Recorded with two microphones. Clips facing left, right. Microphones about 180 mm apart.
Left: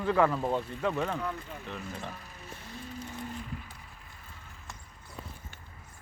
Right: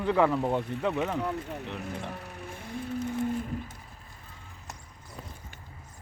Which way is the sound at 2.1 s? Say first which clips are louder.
Right 5 dB; 65° right (ahead or behind).